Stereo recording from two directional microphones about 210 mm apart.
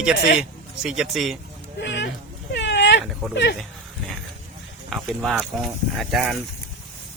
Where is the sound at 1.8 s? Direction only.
55° left (ahead or behind).